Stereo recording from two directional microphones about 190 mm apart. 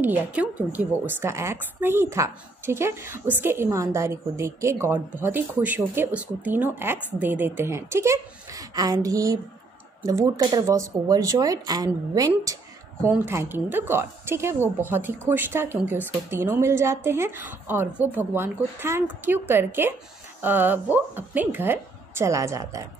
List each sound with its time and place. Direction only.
0.0 s speech: 10° right (ahead or behind)